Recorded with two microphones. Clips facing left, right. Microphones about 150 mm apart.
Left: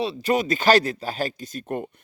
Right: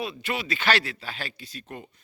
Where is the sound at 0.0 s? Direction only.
35° left (ahead or behind).